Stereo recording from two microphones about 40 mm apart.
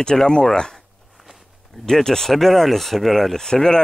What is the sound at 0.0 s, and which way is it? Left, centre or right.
Speech, centre.